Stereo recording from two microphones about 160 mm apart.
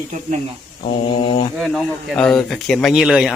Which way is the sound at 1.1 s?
35° left (ahead or behind).